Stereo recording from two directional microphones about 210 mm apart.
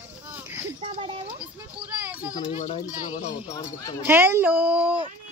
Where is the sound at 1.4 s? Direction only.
5° right (ahead or behind).